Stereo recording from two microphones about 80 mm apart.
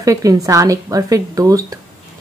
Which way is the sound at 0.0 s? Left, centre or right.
Right.